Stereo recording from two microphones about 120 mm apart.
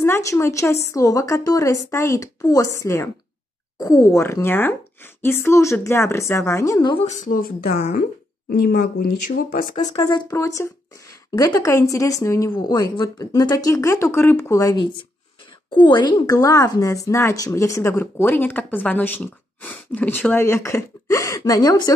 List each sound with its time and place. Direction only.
0.0 s speech: 25° left (ahead or behind)
7.1 s speech: 75° left (ahead or behind)
9.9 s speech: 30° left (ahead or behind)
15.7 s a woman's voice: 40° left (ahead or behind)
16.3 s speech: 25° left (ahead or behind)